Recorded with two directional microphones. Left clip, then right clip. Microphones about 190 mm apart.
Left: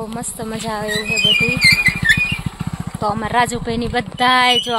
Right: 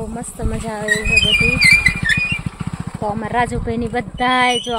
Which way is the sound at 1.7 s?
45° left (ahead or behind).